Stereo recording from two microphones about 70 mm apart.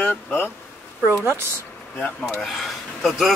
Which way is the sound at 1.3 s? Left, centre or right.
Right.